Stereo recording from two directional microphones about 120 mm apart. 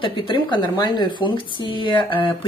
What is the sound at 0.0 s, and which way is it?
Speech, 45° left (ahead or behind).